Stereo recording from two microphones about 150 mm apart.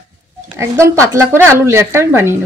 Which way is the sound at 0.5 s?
20° right (ahead or behind).